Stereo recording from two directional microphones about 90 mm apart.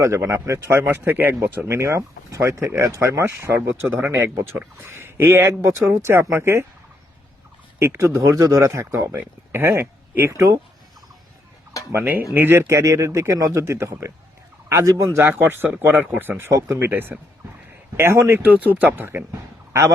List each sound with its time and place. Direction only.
0.0 s speech: 30° right (ahead or behind)
7.8 s speech: 30° right (ahead or behind)
9.1 s speech: 25° right (ahead or behind)
11.9 s speech: 25° right (ahead or behind)
16.5 s speech: 35° right (ahead or behind)
18.3 s speech: 15° right (ahead or behind)